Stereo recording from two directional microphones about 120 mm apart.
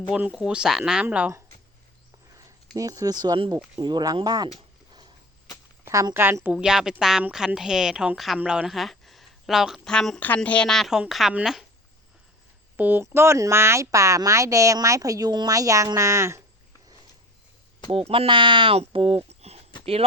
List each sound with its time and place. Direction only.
0.1 s speech: 5° right (ahead or behind)
2.7 s speech: 30° right (ahead or behind)
5.8 s a woman's voice: 25° right (ahead or behind); by 11.6 s 5° right (ahead or behind)
12.7 s a woman's voice: 15° right (ahead or behind)
18.1 s speech: 45° right (ahead or behind)